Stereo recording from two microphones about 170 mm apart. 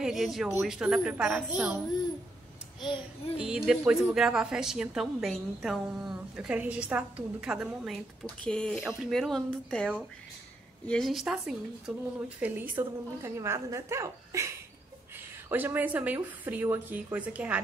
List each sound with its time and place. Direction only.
0.0 s a woman's voice: centre (ahead or behind)
3.3 s a woman's voice: 5° right (ahead or behind)
15.5 s a woman's voice: 10° right (ahead or behind)